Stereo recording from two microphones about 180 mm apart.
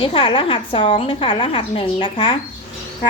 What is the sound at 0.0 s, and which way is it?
Speech, 30° left (ahead or behind).